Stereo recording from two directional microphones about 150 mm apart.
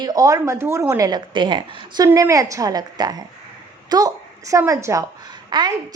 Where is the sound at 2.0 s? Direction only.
20° right (ahead or behind).